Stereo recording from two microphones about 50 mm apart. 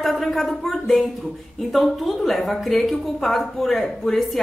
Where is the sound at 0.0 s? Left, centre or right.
Centre.